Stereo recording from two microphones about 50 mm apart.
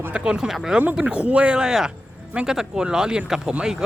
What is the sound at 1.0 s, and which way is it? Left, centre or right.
Speech, right.